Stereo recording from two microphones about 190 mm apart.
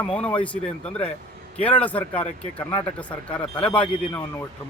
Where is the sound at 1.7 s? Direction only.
10° left (ahead or behind).